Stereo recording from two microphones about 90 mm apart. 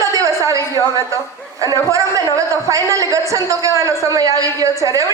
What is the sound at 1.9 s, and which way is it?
A man's voice, 40° right (ahead or behind).